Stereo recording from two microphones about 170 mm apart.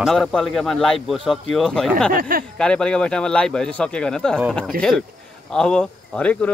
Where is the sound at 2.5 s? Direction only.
5° left (ahead or behind).